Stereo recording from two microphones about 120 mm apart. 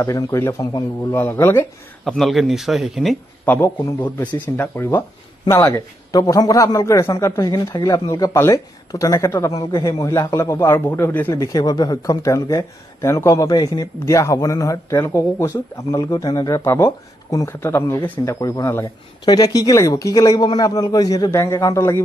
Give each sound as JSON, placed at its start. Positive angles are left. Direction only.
{"t": 0.0, "sound": "speech", "side_deg": 25}
{"t": 2.0, "sound": "speech", "side_deg": 0}
{"t": 3.5, "sound": "speech", "side_deg": 10}
{"t": 10.9, "sound": "speech", "side_deg": 15}